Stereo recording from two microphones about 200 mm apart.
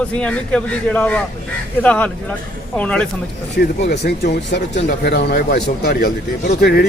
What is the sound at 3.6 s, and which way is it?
Speech, 50° left (ahead or behind).